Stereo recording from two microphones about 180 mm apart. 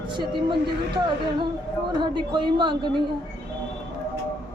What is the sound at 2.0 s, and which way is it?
Speech, 25° right (ahead or behind).